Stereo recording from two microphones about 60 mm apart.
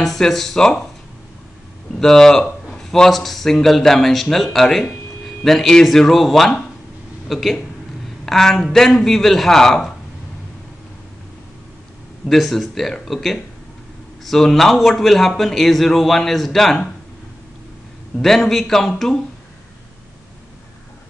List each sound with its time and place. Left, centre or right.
0.0 s a man's voice: centre
2.0 s a man's voice: centre
12.3 s a man's voice: centre
18.2 s a man's voice: centre